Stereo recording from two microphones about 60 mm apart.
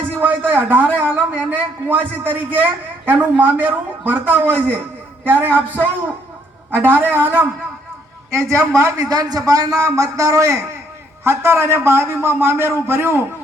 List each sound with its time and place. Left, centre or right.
0.2 s a man's voice: right
8.3 s a man's voice: right
9.0 s a man's voice: right
11.2 s a man's voice: right